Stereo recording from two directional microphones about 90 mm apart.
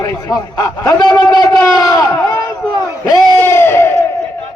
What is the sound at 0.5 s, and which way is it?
Speech, 45° left (ahead or behind).